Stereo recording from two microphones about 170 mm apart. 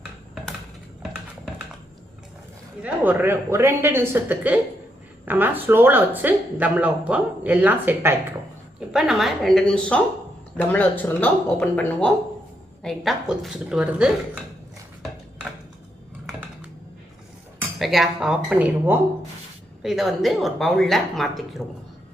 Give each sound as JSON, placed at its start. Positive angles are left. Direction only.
{"t": 2.8, "sound": "a woman's voice", "side_deg": -10}
{"t": 17.7, "sound": "a woman's voice", "side_deg": 0}